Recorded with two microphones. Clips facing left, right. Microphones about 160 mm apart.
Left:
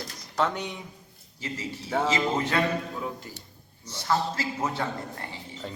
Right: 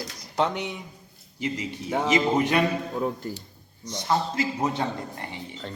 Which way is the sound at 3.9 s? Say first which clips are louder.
Right 2 dB; 20° right (ahead or behind).